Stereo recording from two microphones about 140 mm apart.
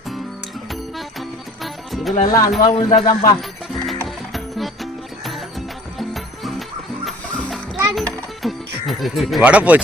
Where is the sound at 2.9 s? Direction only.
65° left (ahead or behind).